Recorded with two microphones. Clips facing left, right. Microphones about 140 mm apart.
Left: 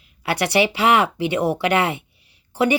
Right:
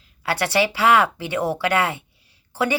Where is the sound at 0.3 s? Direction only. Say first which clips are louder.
Left 2 dB; 15° left (ahead or behind).